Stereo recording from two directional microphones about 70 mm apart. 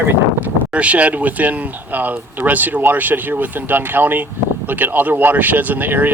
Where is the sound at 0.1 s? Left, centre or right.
Right.